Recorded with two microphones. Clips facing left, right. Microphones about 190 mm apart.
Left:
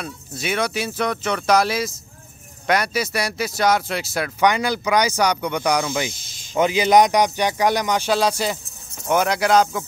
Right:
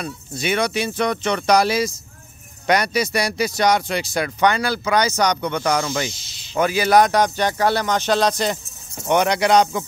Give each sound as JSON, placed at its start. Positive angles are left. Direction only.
{"t": 0.0, "sound": "speech", "side_deg": 0}
{"t": 6.1, "sound": "snake", "side_deg": 50}
{"t": 6.5, "sound": "speech", "side_deg": 20}